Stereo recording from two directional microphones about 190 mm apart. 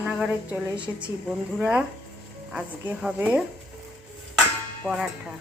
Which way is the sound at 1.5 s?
5° right (ahead or behind).